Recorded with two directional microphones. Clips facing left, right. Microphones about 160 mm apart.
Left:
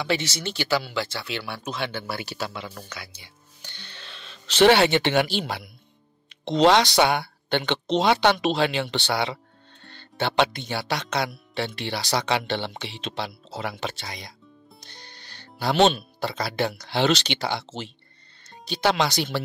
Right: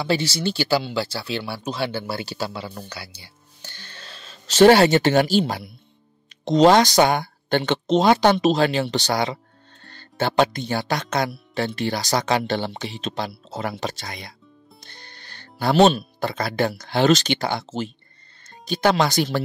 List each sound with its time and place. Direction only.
0.0 s speech: 30° right (ahead or behind)
6.4 s speech: 45° right (ahead or behind)
14.8 s music: 55° right (ahead or behind)
15.6 s speech: 40° right (ahead or behind)